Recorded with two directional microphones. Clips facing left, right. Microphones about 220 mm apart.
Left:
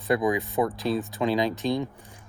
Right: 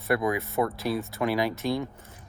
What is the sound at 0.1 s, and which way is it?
Speech, 15° left (ahead or behind).